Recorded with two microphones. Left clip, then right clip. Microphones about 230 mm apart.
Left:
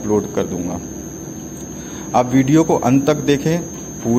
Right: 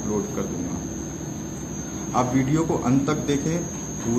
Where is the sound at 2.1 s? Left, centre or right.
Left.